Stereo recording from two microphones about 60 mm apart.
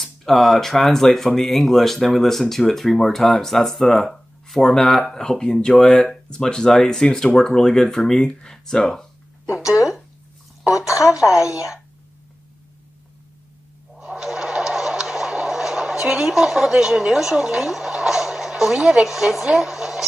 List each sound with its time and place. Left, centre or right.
0.0 s speech: centre
9.6 s speech: left
10.9 s speech: left
13.9 s a sound: centre
19.0 s speech: centre